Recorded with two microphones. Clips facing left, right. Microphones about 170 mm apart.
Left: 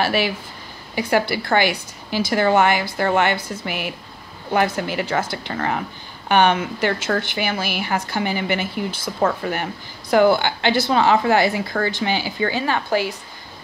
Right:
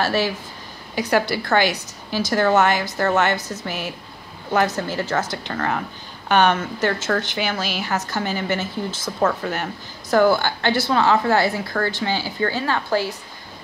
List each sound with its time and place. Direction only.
0.0 s a woman's voice: 10° left (ahead or behind)
1.3 s a woman's voice: 10° left (ahead or behind)